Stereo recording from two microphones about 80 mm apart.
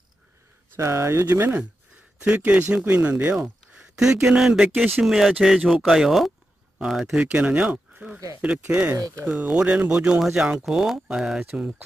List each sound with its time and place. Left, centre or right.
0.7 s speech: right
1.2 s speech: right; by 7.2 s centre
7.3 s speech: centre
8.9 s speech: right
9.4 s speech: centre